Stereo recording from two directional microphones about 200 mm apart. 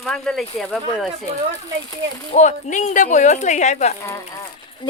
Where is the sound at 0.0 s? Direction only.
5° left (ahead or behind).